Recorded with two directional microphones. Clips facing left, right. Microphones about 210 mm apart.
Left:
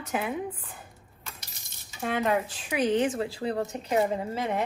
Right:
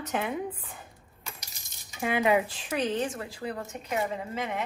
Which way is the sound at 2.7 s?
20° left (ahead or behind).